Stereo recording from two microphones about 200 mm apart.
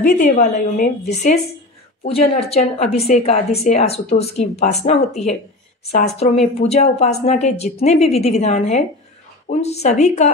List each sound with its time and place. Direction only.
0.0 s a woman's voice: 40° left (ahead or behind)